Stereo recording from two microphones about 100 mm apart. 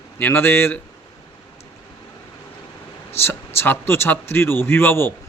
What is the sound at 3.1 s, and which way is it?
Speech, 25° left (ahead or behind).